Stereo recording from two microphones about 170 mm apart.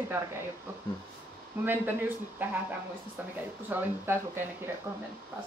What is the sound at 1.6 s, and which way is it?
Speech, 10° right (ahead or behind).